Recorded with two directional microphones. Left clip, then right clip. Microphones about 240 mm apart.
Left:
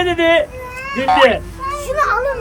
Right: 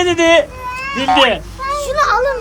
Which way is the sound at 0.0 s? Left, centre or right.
Centre.